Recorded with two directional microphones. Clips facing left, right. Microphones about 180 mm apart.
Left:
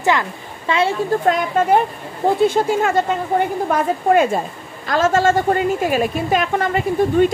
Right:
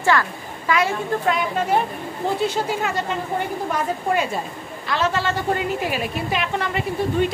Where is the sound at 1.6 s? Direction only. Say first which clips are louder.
Left 5 dB; 50° left (ahead or behind).